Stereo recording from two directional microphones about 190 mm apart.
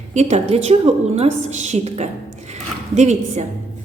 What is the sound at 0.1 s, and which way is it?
A woman's voice, 35° right (ahead or behind).